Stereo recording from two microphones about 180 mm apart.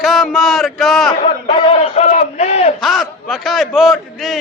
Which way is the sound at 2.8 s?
Centre (ahead or behind).